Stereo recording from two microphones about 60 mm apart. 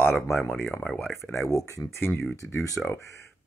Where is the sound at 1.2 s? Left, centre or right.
Left.